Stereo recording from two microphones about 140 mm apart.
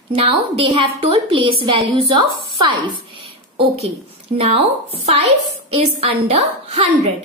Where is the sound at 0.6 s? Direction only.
40° right (ahead or behind).